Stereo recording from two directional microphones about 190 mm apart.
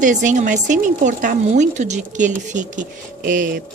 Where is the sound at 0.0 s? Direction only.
40° right (ahead or behind).